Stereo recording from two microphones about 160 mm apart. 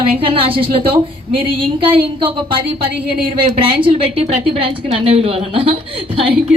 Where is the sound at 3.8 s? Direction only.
35° right (ahead or behind).